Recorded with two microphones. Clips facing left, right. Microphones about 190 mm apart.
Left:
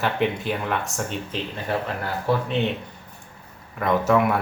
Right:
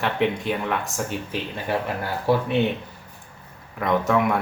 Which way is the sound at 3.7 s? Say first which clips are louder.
Left 1 dB; centre (ahead or behind).